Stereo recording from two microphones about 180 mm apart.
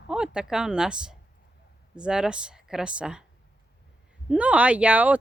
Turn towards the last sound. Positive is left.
turn(degrees=-10)  # may be behind; listen again after turning